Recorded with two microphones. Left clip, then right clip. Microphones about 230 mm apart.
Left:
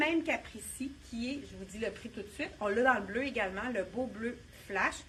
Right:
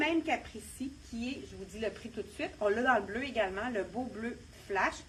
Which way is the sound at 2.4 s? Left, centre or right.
Left.